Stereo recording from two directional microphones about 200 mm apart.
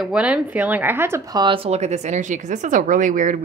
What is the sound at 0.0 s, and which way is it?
Speech, 5° right (ahead or behind).